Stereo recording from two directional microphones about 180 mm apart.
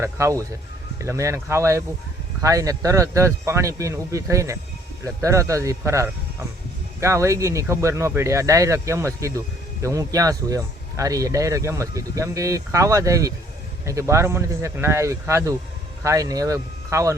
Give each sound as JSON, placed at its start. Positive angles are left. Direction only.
{"t": 0.0, "sound": "speech", "side_deg": -15}